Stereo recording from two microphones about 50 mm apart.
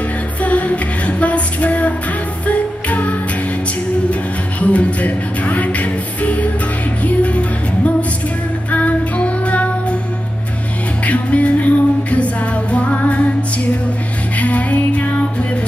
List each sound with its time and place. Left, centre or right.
0.4 s music: left
11.1 s music: left
14.4 s music: left